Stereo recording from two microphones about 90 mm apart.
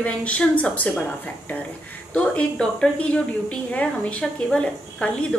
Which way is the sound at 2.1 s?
10° left (ahead or behind).